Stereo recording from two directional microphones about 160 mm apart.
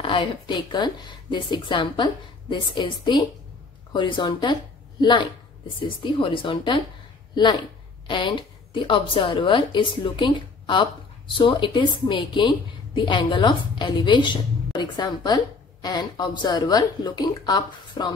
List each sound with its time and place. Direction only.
0.0 s a woman's voice: 30° left (ahead or behind)
8.1 s a woman's voice: 30° left (ahead or behind)